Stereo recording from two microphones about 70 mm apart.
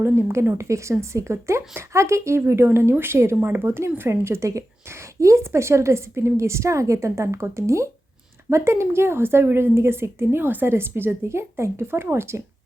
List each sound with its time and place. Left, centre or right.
0.0 s a woman's voice: right